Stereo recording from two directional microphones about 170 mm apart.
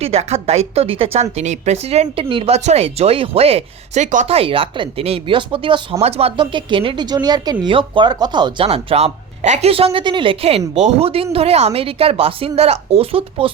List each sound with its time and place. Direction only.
0.0 s a woman's voice: 40° right (ahead or behind)